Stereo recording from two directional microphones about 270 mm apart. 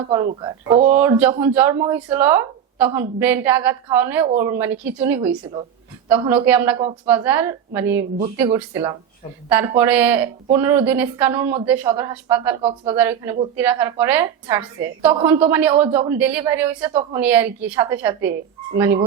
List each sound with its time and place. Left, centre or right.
0.1 s speech: right
0.9 s a woman's voice: centre